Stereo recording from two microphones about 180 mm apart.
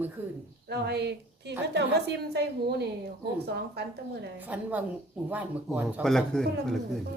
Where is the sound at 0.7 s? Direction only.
65° right (ahead or behind).